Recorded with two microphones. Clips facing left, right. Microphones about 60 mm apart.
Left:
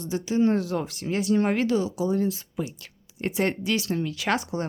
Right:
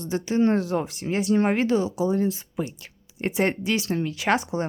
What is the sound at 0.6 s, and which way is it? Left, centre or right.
Speech, right.